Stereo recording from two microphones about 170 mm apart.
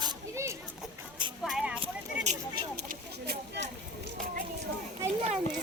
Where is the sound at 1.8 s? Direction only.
40° right (ahead or behind).